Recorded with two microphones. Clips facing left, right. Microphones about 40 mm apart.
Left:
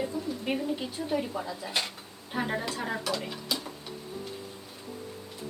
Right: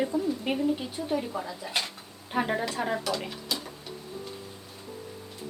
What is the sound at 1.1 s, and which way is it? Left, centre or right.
Speech, centre.